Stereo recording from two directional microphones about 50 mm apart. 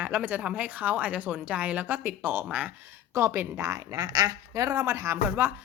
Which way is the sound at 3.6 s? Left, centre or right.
Right.